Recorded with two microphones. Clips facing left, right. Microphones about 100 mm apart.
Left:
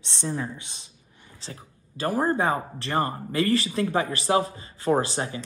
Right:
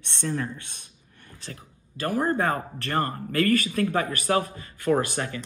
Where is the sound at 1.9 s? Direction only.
30° left (ahead or behind).